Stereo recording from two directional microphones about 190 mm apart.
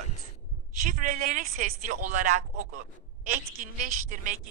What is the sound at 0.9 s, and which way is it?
A woman's voice, 45° right (ahead or behind).